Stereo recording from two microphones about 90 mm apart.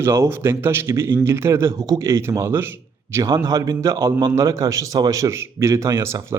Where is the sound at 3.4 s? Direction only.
40° right (ahead or behind).